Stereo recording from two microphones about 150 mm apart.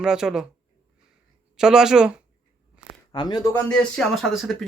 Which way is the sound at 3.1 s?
25° left (ahead or behind).